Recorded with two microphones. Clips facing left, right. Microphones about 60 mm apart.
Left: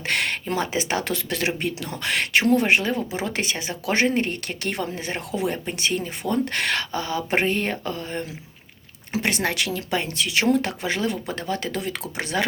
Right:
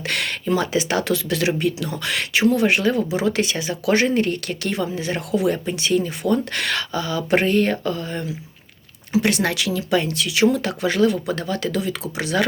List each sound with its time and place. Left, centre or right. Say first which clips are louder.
0.0 s speech: even; left